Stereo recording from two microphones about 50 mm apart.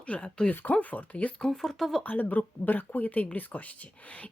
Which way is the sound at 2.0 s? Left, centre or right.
Left.